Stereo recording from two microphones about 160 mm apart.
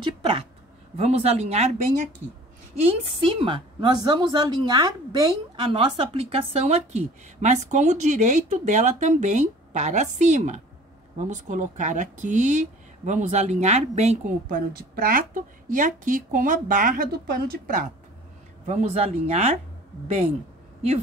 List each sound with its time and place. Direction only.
0.0 s a woman's voice: 35° right (ahead or behind)
14.5 s a woman's voice: 70° right (ahead or behind)
18.7 s speech: 45° right (ahead or behind)